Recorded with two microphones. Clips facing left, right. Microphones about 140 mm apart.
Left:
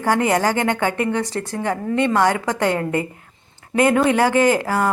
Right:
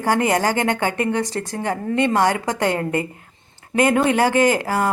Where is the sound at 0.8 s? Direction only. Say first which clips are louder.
Even; 35° right (ahead or behind).